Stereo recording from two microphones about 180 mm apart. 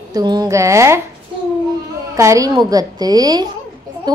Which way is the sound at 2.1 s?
15° right (ahead or behind).